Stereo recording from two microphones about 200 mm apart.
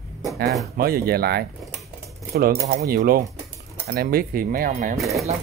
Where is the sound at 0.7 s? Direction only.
50° right (ahead or behind).